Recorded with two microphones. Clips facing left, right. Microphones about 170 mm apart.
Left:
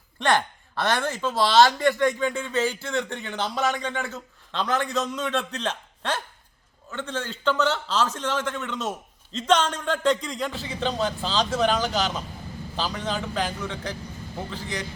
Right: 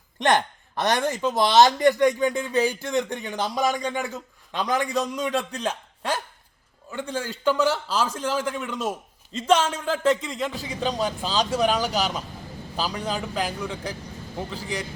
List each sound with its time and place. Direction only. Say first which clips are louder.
0.2 s speech: right 2 dB; 20° right (ahead or behind); by 10.5 s 5° right (ahead or behind)
10.5 s speech: right 1 dB; 15° right (ahead or behind)